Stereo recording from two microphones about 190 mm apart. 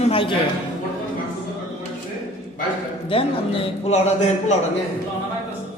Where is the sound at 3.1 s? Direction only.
30° left (ahead or behind).